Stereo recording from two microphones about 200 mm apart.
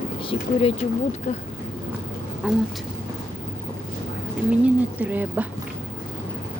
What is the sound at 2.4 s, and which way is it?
Speech, 5° right (ahead or behind).